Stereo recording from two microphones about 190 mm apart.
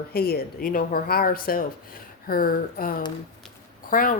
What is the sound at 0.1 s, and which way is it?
Speech, 55° left (ahead or behind).